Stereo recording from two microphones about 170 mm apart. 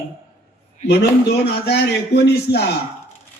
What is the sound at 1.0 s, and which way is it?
A man's voice, 70° left (ahead or behind).